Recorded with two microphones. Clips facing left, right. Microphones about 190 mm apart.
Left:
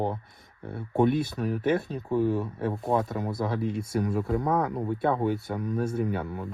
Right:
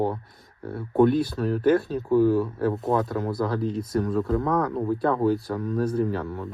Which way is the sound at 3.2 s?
25° left (ahead or behind).